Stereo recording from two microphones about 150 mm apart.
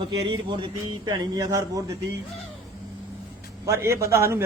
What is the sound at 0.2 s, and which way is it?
A man's voice, 30° right (ahead or behind).